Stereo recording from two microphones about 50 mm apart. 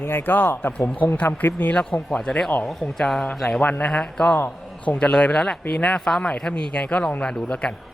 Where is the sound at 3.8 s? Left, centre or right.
Centre.